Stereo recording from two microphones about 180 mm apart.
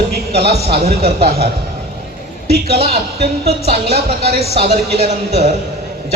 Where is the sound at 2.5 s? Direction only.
60° right (ahead or behind).